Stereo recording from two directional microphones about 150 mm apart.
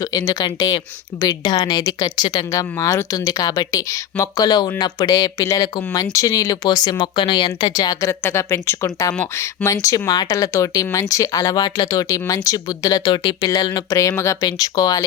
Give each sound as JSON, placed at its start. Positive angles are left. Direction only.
{"t": 0.0, "sound": "speech", "side_deg": 25}